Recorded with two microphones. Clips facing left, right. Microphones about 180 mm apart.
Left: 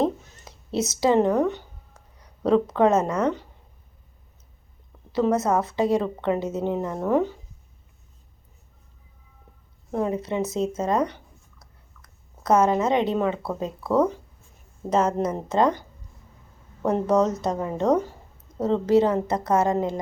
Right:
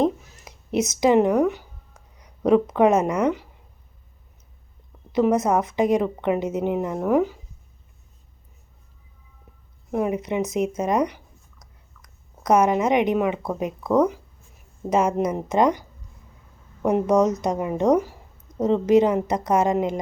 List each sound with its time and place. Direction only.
0.0 s a sound: 15° right (ahead or behind)
2.1 s speech: 15° right (ahead or behind)
5.1 s speech: 15° right (ahead or behind)
9.9 s speech: 15° right (ahead or behind)
11.6 s chewing: 15° right (ahead or behind)
13.6 s speech: 15° right (ahead or behind)
16.8 s speech: 15° right (ahead or behind)